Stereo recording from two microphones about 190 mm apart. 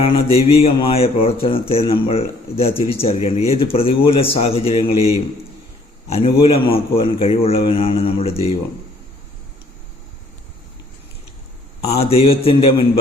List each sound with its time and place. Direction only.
0.0 s speech: 30° left (ahead or behind)
6.1 s speech: 30° left (ahead or behind)
11.9 s speech: 30° left (ahead or behind)